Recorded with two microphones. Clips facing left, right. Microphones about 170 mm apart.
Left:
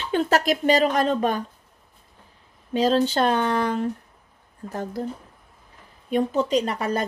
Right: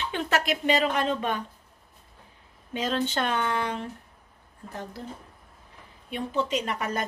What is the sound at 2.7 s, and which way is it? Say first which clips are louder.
A woman's voice: left 8 dB; 35° left (ahead or behind).